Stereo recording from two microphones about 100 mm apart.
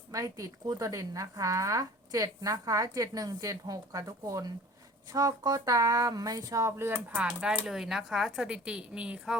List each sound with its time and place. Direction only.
0.1 s speech: 35° right (ahead or behind); by 7.3 s 20° right (ahead or behind)
7.3 s speech: 5° right (ahead or behind)